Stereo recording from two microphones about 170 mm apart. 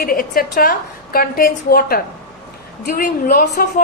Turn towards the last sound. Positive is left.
turn(degrees=55)  # may be behind; listen again after turning